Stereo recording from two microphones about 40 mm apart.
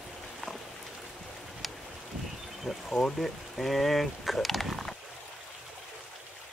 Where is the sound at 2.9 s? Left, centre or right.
Centre.